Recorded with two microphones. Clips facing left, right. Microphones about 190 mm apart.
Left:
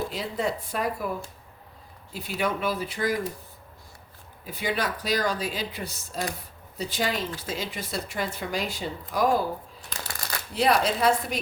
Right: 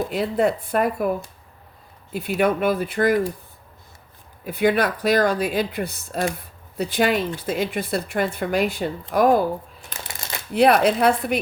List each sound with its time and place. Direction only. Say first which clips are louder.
0.1 s speech: right 8 dB; 60° right (ahead or behind)
2.1 s speech: right 8 dB; 60° right (ahead or behind)
4.4 s speech: right 9 dB; 60° right (ahead or behind)
10.0 s shuffling cards: right 1 dB; 25° right (ahead or behind)
10.5 s speech: right 7 dB; 60° right (ahead or behind)